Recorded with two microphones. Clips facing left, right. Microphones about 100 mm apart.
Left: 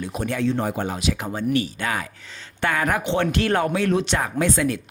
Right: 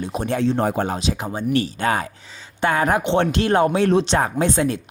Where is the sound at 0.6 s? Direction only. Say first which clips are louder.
Right 4 dB; 45° right (ahead or behind).